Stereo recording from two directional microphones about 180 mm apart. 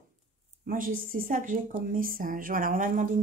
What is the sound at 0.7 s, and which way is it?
Speech, 50° right (ahead or behind).